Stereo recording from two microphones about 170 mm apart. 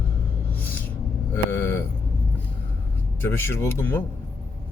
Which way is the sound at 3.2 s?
10° left (ahead or behind).